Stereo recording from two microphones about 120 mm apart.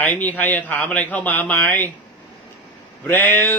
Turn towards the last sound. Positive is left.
turn(degrees=15)  # may be behind; listen again after turning